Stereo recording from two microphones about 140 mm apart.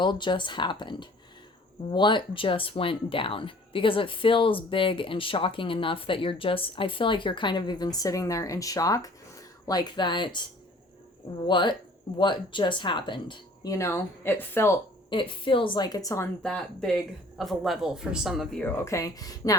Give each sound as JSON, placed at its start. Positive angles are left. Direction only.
{"t": 0.0, "sound": "speech", "side_deg": 35}
{"t": 11.4, "sound": "speech", "side_deg": 35}
{"t": 13.7, "sound": "speech", "side_deg": 20}
{"t": 15.1, "sound": "speech", "side_deg": 40}
{"t": 16.4, "sound": "speech", "side_deg": 5}
{"t": 18.6, "sound": "speech", "side_deg": 20}